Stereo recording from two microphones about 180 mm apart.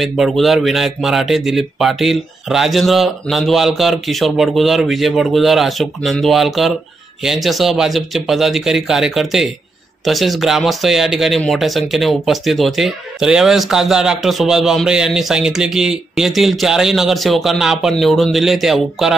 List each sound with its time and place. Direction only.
0.0 s speech: centre (ahead or behind)